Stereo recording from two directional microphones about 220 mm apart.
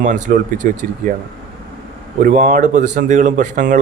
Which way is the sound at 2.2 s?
40° right (ahead or behind).